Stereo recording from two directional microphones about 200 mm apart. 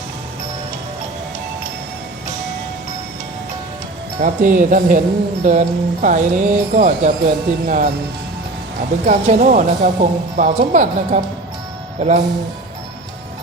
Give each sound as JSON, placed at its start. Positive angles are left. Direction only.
{"t": 4.2, "sound": "speech", "side_deg": -45}
{"t": 9.0, "sound": "speech", "side_deg": -40}